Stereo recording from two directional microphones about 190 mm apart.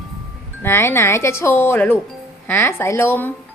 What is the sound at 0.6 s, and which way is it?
Speech, 10° left (ahead or behind).